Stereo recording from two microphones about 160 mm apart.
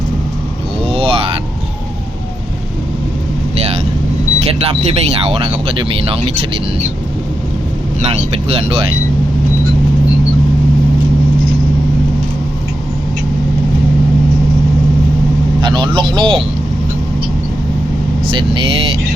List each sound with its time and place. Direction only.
0.9 s a sound: 35° right (ahead or behind)
4.4 s speech: 40° right (ahead or behind)
8.4 s speech: 40° right (ahead or behind)
15.6 s speech: 30° right (ahead or behind)
18.3 s speech: 30° right (ahead or behind)